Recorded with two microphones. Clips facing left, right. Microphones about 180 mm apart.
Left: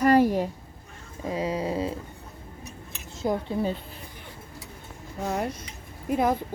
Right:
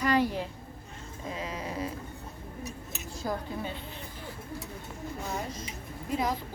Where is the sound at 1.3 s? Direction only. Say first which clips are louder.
Left 9 dB; 30° left (ahead or behind).